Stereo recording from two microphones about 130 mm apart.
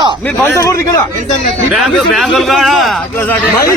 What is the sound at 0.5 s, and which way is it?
Speech, 20° left (ahead or behind).